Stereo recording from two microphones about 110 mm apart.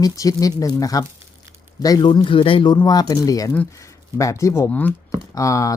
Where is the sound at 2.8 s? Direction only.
35° left (ahead or behind).